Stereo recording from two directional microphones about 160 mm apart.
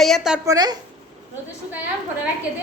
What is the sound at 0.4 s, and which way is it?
Speech, 25° right (ahead or behind).